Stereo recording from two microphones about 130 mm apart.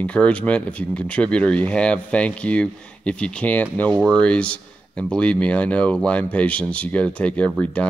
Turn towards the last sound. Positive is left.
turn(degrees=10)  # may be behind; listen again after turning